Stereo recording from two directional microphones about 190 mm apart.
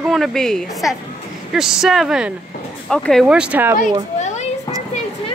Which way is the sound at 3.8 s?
40° left (ahead or behind).